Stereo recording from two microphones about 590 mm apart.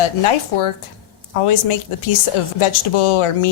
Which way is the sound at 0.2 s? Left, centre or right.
Left.